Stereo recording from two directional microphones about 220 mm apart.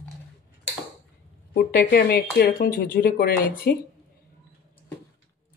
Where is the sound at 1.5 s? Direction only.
45° left (ahead or behind).